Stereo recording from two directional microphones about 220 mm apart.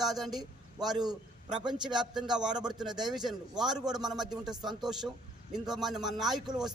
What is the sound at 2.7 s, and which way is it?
A man's voice, centre (ahead or behind).